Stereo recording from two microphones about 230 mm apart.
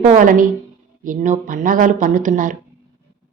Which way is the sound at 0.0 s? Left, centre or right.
Right.